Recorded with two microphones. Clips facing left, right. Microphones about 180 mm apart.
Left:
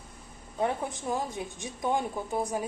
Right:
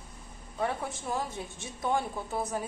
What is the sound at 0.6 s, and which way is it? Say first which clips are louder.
A woman's voice: left 3 dB; 20° left (ahead or behind).